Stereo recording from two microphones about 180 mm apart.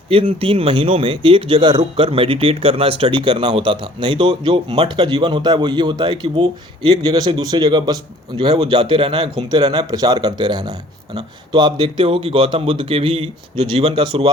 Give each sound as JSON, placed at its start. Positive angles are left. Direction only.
{"t": 0.1, "sound": "speech", "side_deg": -30}